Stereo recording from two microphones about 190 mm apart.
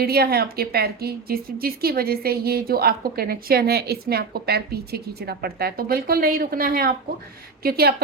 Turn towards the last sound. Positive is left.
turn(degrees=-55)  # may be behind; listen again after turning